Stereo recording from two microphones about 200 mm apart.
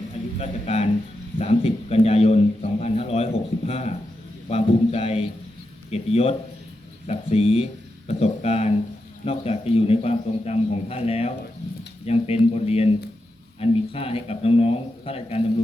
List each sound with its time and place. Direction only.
0.3 s a man's voice: 30° left (ahead or behind)